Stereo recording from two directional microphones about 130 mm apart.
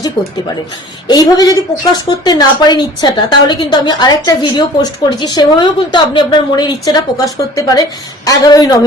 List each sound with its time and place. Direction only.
1.0 s a woman's voice: 30° left (ahead or behind)